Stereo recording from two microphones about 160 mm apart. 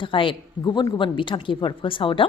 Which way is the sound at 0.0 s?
30° left (ahead or behind).